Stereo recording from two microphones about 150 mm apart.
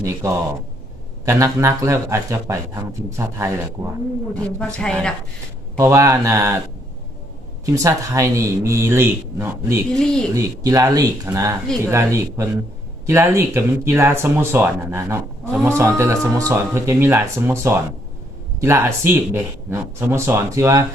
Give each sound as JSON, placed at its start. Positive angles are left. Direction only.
{"t": 0.0, "sound": "speech", "side_deg": -20}
{"t": 4.4, "sound": "a woman's voice", "side_deg": 5}
{"t": 5.7, "sound": "speech", "side_deg": -20}
{"t": 7.6, "sound": "speech", "side_deg": -20}
{"t": 9.9, "sound": "speech", "side_deg": 5}
{"t": 10.3, "sound": "speech", "side_deg": -25}